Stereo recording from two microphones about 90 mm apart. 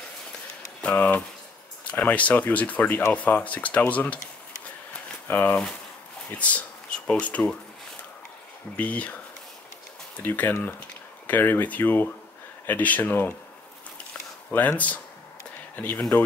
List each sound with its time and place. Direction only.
0.7 s speech: 15° left (ahead or behind)
5.3 s speech: 20° left (ahead or behind)
8.7 s speech: 15° left (ahead or behind)
14.5 s speech: 15° left (ahead or behind)